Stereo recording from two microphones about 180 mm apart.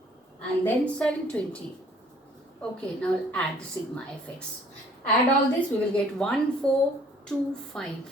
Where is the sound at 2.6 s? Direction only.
5° left (ahead or behind).